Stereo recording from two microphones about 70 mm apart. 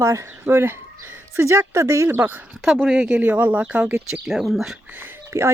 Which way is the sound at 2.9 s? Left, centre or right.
Centre.